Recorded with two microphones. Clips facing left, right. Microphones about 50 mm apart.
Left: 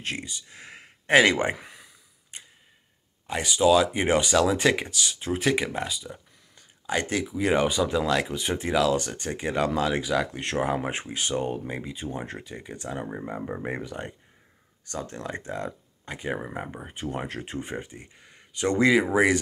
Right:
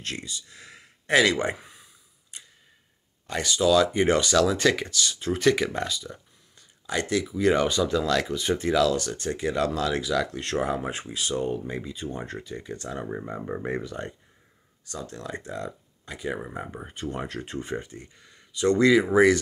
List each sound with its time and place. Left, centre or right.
0.0 s speech: left
2.3 s tick-tock: left
3.3 s speech: left
6.9 s speech: left
7.3 s speech: left
14.9 s speech: left
16.9 s speech: left
18.7 s speech: left